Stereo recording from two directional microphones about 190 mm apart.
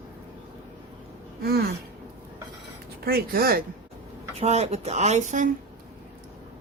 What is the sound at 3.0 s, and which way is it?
Speech, 50° right (ahead or behind).